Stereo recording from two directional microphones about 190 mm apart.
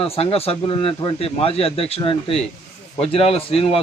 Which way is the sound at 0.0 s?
30° left (ahead or behind).